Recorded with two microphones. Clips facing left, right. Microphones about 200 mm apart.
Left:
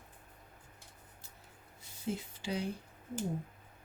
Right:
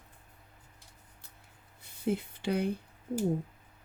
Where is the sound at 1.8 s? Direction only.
60° right (ahead or behind).